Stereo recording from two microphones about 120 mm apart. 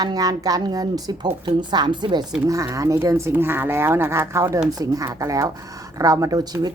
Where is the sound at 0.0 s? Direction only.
30° right (ahead or behind).